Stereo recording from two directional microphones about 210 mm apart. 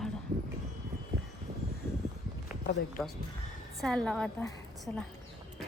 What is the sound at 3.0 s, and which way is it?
A woman's voice, centre (ahead or behind).